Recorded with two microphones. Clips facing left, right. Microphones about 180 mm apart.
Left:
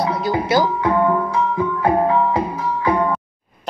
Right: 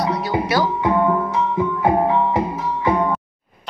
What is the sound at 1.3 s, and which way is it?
Music, 20° right (ahead or behind).